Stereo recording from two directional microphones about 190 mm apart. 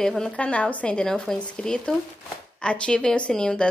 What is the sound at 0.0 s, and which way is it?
Speech, 5° left (ahead or behind).